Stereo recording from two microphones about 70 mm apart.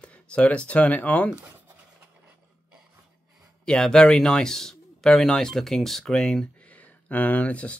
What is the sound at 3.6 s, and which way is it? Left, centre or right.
Speech, centre.